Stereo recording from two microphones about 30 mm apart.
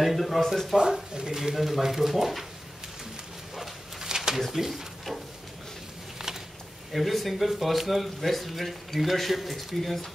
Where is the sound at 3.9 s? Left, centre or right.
Centre.